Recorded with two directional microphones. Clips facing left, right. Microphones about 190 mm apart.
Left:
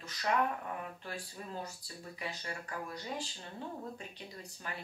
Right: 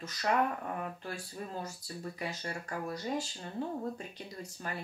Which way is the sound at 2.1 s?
40° right (ahead or behind).